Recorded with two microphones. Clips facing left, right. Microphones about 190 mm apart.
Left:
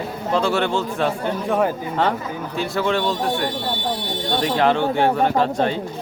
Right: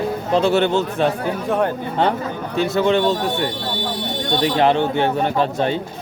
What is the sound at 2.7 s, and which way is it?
Speech, 20° right (ahead or behind).